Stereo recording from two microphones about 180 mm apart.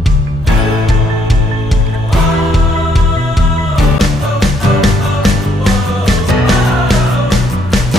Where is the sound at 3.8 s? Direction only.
Centre (ahead or behind).